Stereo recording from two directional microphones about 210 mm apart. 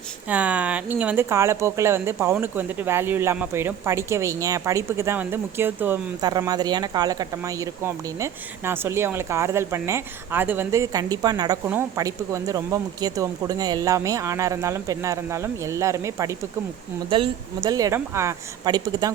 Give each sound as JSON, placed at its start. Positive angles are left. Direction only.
{"t": 0.3, "sound": "speech", "side_deg": -5}